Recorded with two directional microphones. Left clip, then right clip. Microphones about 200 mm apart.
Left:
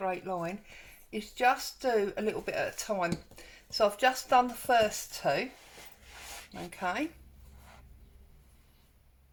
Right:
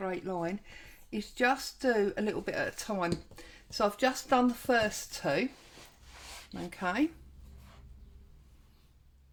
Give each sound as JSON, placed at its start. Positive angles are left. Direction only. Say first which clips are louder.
{"t": 0.0, "sound": "speech", "louder": "left 1 dB", "side_deg": -40}
{"t": 6.5, "sound": "speech", "louder": "even", "side_deg": -40}